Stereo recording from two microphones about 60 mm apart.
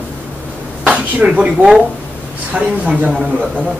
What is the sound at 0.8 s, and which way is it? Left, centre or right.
Speech, right.